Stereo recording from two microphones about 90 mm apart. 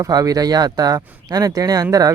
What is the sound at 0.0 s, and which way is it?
Speech, 40° right (ahead or behind).